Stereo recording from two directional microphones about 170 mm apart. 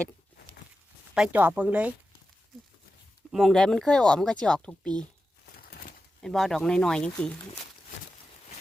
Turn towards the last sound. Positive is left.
turn(degrees=5)  # may be behind; listen again after turning